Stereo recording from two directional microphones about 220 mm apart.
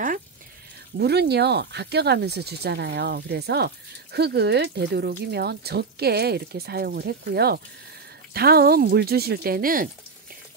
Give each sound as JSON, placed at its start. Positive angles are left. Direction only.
{"t": 0.9, "sound": "speech", "side_deg": -50}